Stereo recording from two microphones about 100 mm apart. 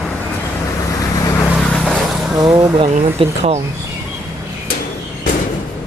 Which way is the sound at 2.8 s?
80° right.